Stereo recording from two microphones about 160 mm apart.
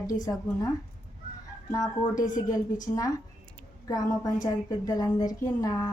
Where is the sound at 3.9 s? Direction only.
20° left (ahead or behind).